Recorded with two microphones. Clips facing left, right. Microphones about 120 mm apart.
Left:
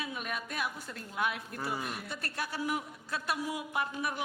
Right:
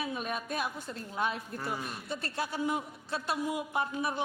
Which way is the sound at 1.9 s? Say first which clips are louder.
Right 3 dB; 25° right (ahead or behind).